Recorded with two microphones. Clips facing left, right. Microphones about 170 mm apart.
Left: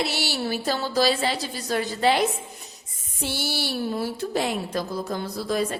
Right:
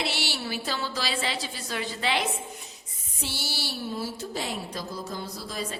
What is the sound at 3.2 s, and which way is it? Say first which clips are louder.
A woman's voice: left 7 dB; 50° left (ahead or behind).